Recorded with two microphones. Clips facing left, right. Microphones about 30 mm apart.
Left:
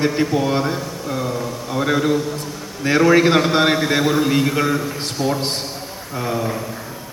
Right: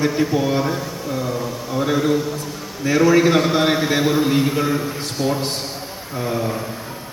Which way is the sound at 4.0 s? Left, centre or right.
Centre.